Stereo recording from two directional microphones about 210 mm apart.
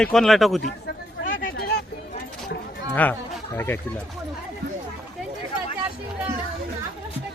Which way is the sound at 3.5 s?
10° left (ahead or behind).